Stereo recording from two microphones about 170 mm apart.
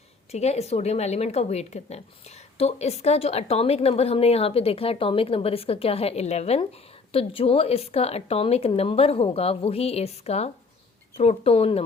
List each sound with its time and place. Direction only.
0.3 s a woman's voice: 40° left (ahead or behind)